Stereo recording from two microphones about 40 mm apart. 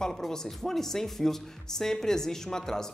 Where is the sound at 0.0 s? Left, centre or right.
Centre.